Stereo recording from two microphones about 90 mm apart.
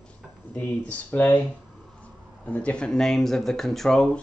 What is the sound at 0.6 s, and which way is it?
Speech, 15° left (ahead or behind).